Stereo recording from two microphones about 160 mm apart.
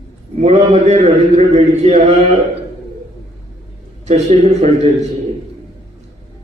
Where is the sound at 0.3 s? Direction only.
45° right (ahead or behind).